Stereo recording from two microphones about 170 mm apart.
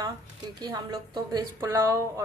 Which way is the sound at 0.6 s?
25° right (ahead or behind).